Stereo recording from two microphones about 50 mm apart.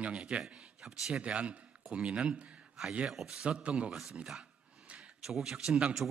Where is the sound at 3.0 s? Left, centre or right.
Centre.